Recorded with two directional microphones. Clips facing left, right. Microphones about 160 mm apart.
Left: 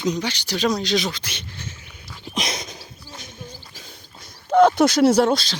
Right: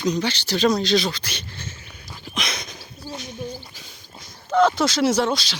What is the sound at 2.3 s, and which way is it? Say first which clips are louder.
Speech: left 2 dB; 40° left (ahead or behind).